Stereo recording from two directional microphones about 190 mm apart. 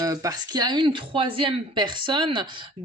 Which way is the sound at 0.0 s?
20° right (ahead or behind).